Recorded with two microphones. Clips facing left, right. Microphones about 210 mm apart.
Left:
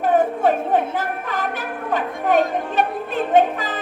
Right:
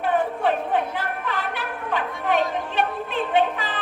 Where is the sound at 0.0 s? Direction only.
45° left (ahead or behind).